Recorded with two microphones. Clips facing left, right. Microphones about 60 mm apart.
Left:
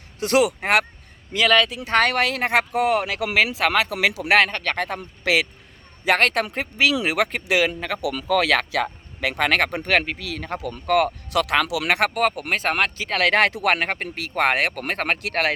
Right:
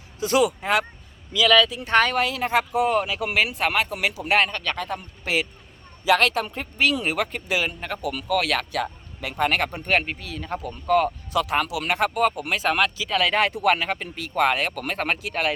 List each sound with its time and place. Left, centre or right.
0.2 s speech: left
6.1 s speech: left
10.8 s speech: left
12.4 s speech: left